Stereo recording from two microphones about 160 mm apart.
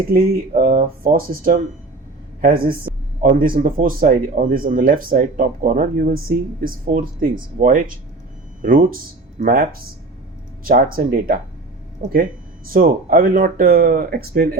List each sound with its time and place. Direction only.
0.1 s speech: 65° right (ahead or behind)
12.0 s speech: 50° right (ahead or behind)
12.7 s speech: 65° right (ahead or behind)